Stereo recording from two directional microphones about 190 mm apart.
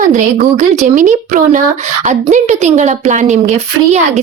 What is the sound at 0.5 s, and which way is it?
A woman's voice, 40° right (ahead or behind).